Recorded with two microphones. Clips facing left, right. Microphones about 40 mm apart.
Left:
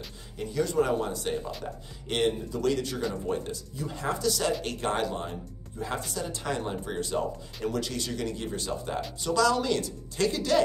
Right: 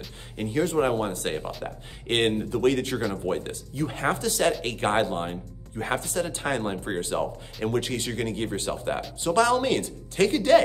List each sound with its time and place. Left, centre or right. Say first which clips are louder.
0.4 s speech: right 3 dB; right